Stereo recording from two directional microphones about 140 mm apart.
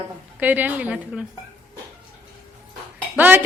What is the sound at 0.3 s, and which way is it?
Speech, 10° right (ahead or behind).